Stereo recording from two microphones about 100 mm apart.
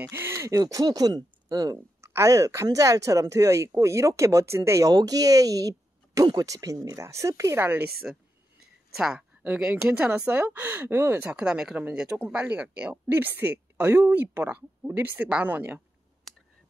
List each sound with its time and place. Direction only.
0.0 s speech: 25° right (ahead or behind); by 1.8 s 40° right (ahead or behind)
2.0 s speech: 30° right (ahead or behind)
8.0 s speech: 10° right (ahead or behind)
11.3 s a woman's voice: 10° right (ahead or behind)